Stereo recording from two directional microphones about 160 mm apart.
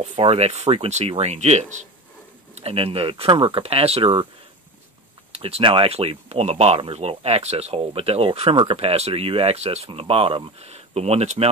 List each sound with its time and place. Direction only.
0.2 s speech: 40° right (ahead or behind)
5.4 s speech: 35° right (ahead or behind)